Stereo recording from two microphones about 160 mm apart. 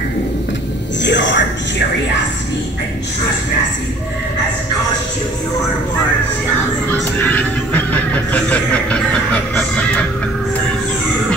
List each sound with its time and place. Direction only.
1.0 s music: 90° left
6.9 s music: 10° left (ahead or behind)